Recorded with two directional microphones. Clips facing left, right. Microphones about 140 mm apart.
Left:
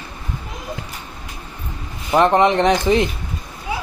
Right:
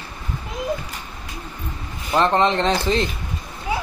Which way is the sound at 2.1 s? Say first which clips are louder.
Left 4 dB; 15° left (ahead or behind).